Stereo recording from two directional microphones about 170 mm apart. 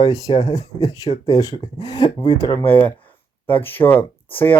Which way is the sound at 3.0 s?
10° left (ahead or behind).